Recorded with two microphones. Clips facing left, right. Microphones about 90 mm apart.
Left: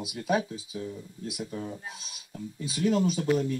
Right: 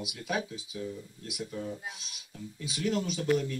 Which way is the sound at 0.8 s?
20° left (ahead or behind).